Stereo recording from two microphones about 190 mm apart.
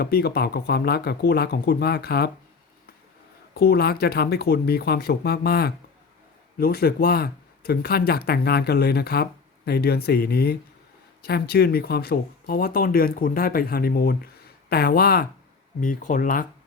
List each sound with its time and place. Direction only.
0.0 s speech: 55° left (ahead or behind)
3.5 s speech: 55° left (ahead or behind)